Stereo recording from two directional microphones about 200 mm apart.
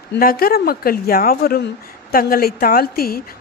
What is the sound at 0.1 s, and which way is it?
A woman's voice, 45° left (ahead or behind).